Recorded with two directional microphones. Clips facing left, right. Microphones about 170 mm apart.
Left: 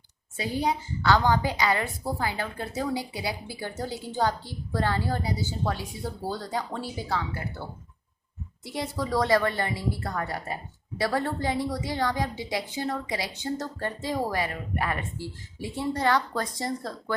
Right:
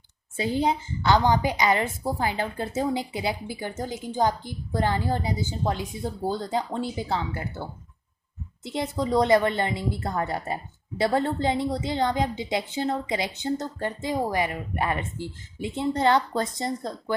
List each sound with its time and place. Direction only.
0.3 s a woman's voice: 25° right (ahead or behind)
8.6 s a woman's voice: 20° right (ahead or behind)